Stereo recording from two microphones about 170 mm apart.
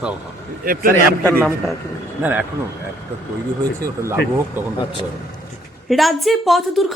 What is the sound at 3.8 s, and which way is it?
Speech, 15° right (ahead or behind).